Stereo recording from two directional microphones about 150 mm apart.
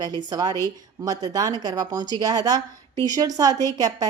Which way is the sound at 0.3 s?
25° right (ahead or behind).